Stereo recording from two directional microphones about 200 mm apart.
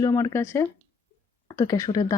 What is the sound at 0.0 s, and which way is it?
Speech, 20° left (ahead or behind).